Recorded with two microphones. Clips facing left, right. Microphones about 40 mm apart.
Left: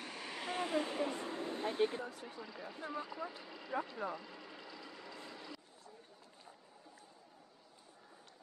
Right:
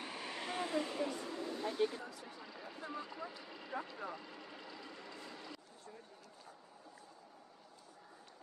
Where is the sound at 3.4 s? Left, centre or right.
Centre.